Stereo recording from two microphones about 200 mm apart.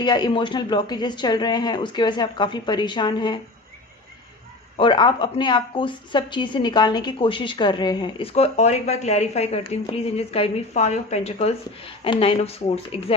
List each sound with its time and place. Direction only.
0.0 s a woman's voice: 20° left (ahead or behind)
4.8 s a woman's voice: 25° left (ahead or behind)